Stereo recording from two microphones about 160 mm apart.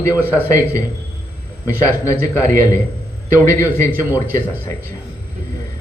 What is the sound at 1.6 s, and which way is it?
A man's voice, 20° left (ahead or behind).